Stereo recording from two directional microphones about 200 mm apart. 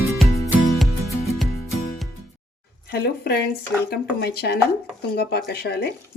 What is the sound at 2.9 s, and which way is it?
A woman's voice, 50° left (ahead or behind).